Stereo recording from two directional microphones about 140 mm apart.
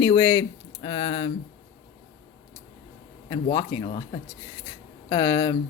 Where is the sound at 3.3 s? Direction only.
30° left (ahead or behind).